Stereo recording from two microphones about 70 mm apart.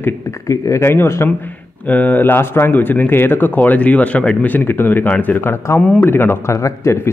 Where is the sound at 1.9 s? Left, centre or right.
Left.